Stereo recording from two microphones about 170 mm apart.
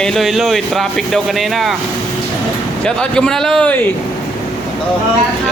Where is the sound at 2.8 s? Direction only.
5° left (ahead or behind).